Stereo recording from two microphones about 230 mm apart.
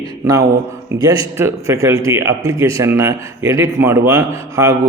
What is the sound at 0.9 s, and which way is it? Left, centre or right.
A man's voice, centre.